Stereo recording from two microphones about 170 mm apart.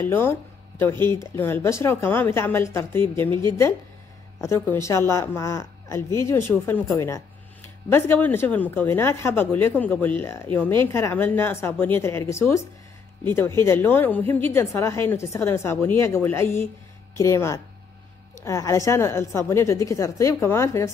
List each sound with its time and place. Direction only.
0.0 s speech: 10° left (ahead or behind)
0.9 s speech: 25° right (ahead or behind)
1.2 s speech: 15° left (ahead or behind)
4.4 s speech: 15° left (ahead or behind)